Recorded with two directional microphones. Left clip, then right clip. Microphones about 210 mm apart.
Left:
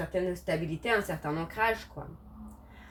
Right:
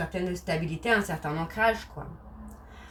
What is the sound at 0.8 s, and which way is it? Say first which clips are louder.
Speech: right 6 dB; 25° left (ahead or behind).